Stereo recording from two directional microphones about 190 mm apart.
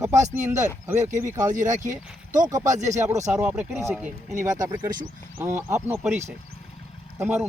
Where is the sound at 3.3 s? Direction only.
10° right (ahead or behind).